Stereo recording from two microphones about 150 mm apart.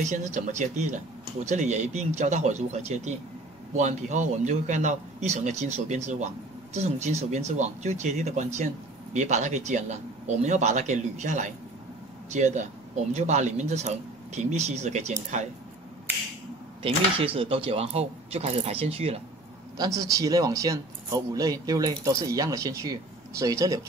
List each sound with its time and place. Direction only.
0.0 s speech: 55° right (ahead or behind)
16.8 s speech: 40° right (ahead or behind)
19.8 s speech: 25° right (ahead or behind)